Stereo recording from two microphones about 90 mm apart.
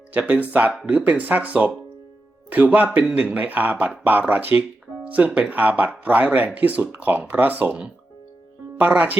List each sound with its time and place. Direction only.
0.1 s speech: 15° right (ahead or behind)